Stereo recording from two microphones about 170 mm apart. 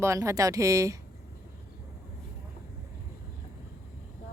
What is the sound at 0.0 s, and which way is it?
Speech, 15° right (ahead or behind).